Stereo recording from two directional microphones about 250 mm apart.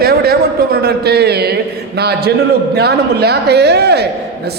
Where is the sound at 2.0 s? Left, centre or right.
Right.